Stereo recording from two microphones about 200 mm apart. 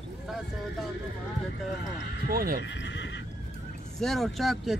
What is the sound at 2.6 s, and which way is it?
Speech, 60° left (ahead or behind).